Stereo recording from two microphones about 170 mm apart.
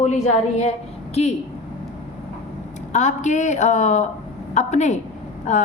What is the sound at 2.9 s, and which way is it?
A woman's voice, 45° left (ahead or behind).